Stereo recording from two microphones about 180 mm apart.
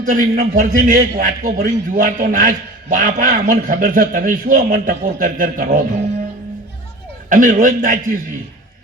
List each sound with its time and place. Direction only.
0.0 s a man's voice: 50° right (ahead or behind)
7.3 s a man's voice: 45° right (ahead or behind)